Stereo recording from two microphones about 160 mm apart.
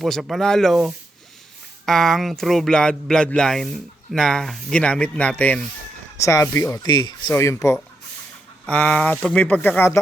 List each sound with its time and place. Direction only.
0.0 s speech: centre (ahead or behind)